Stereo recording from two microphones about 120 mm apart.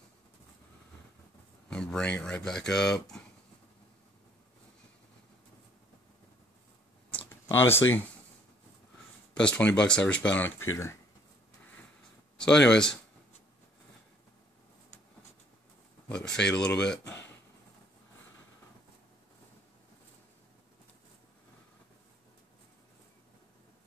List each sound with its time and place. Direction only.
1.7 s speech: 5° left (ahead or behind)
7.5 s speech: 20° left (ahead or behind)
9.3 s speech: 10° left (ahead or behind)
12.4 s speech: 5° left (ahead or behind)
16.1 s speech: 10° left (ahead or behind)